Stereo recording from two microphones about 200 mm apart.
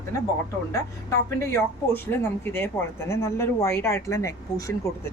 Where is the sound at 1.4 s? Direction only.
10° left (ahead or behind).